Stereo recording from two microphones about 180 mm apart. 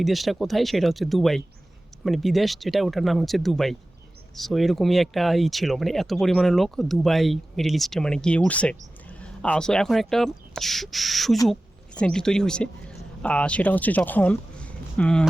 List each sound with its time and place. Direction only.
0.0 s speech: centre (ahead or behind)